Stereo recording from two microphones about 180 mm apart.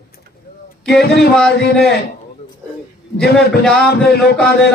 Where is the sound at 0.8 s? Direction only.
65° left (ahead or behind).